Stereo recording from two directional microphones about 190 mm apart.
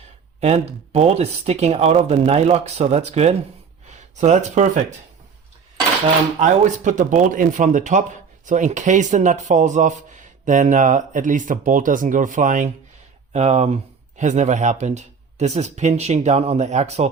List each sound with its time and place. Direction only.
0.3 s speech: 35° right (ahead or behind)
6.4 s speech: 40° right (ahead or behind)